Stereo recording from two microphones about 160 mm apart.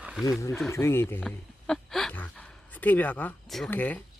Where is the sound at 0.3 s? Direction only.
20° left (ahead or behind).